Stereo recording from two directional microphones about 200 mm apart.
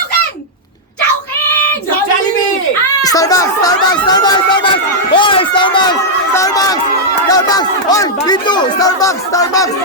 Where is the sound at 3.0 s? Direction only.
20° left (ahead or behind).